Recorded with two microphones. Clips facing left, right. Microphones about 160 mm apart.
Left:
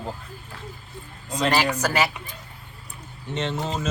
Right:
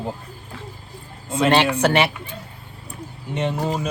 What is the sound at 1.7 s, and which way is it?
Speech, 30° right (ahead or behind).